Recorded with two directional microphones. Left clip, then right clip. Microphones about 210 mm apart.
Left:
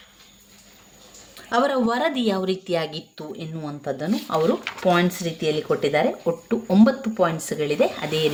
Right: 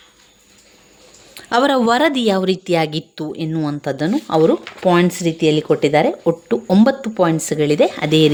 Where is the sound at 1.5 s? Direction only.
45° right (ahead or behind).